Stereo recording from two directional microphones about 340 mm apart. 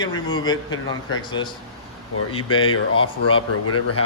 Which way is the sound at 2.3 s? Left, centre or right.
Centre.